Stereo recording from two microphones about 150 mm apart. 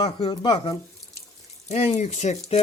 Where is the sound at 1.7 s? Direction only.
45° left (ahead or behind).